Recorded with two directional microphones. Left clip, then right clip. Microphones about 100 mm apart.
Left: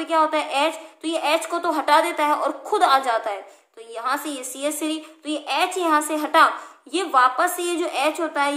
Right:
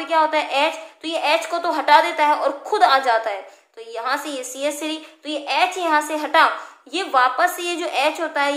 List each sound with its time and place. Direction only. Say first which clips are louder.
0.0 s a woman's voice: right 2 dB; 30° left (ahead or behind)